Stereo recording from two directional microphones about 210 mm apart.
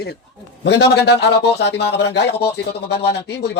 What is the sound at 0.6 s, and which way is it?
Speech, 55° left (ahead or behind).